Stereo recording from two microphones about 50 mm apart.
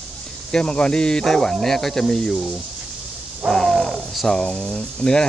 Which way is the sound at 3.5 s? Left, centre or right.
Centre.